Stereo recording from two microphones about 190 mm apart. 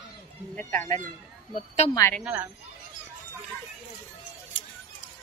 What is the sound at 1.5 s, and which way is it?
Speech, 35° left (ahead or behind).